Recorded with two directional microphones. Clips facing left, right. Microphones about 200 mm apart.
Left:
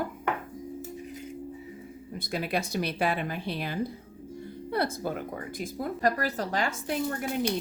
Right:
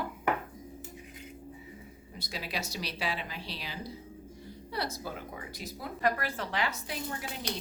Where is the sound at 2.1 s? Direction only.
55° left (ahead or behind).